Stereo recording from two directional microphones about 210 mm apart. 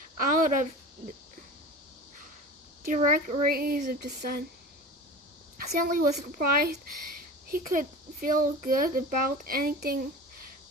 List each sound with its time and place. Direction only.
0.2 s speech: 40° right (ahead or behind)
2.8 s speech: 35° right (ahead or behind)
5.5 s a woman's voice: 40° right (ahead or behind)